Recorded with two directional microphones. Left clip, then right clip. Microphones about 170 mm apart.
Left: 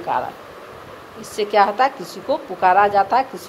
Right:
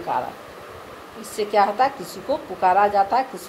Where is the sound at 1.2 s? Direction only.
15° left (ahead or behind).